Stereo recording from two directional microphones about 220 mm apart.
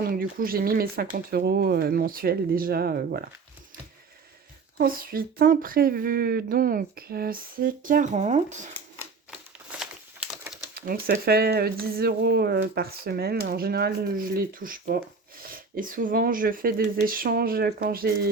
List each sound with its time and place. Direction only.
0.0 s speech: 40° right (ahead or behind)
4.8 s speech: 40° right (ahead or behind)
9.7 s crumpling: 5° right (ahead or behind)
10.8 s speech: 40° right (ahead or behind)